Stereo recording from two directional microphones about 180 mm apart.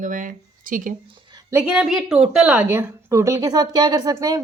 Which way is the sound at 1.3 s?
15° right (ahead or behind).